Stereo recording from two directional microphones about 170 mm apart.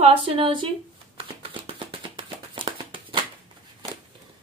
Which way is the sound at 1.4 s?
30° right (ahead or behind).